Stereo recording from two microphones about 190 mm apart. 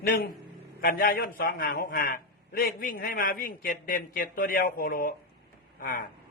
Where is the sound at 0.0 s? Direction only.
50° left (ahead or behind).